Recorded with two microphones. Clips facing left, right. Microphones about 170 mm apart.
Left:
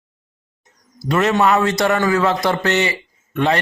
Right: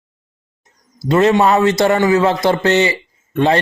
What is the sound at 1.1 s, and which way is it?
Speech, 30° right (ahead or behind).